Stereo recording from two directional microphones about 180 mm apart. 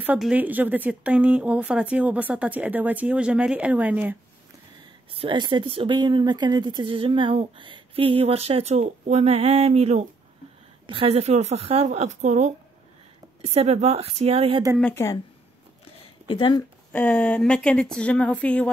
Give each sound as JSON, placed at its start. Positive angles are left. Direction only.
{"t": 0.0, "sound": "a woman's voice", "side_deg": -5}
{"t": 5.1, "sound": "speech", "side_deg": -30}
{"t": 14.8, "sound": "speech", "side_deg": 5}
{"t": 16.0, "sound": "a sound", "side_deg": 30}
{"t": 16.9, "sound": "speech", "side_deg": 10}